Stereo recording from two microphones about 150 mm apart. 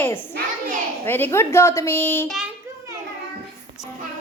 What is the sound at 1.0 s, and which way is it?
A man's voice, 15° left (ahead or behind).